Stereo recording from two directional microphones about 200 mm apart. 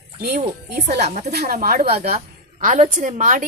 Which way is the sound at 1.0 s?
35° right (ahead or behind).